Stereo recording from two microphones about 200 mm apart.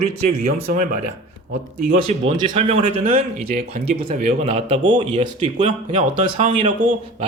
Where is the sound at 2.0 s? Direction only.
25° right (ahead or behind).